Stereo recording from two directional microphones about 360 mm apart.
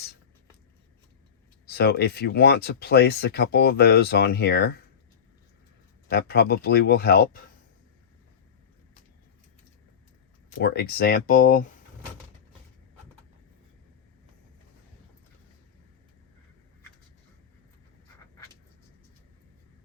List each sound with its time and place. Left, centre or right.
1.6 s speech: left
6.1 s speech: left
10.6 s speech: left